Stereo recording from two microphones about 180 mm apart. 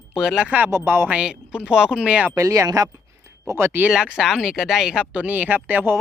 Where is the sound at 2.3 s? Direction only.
15° right (ahead or behind).